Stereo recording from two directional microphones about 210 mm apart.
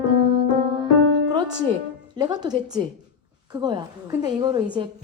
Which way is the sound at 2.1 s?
20° right (ahead or behind).